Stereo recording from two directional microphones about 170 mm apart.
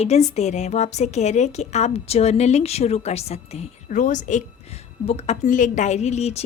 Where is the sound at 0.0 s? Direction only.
40° left (ahead or behind).